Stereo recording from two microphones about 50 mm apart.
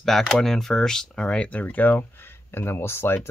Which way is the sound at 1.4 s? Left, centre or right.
Left.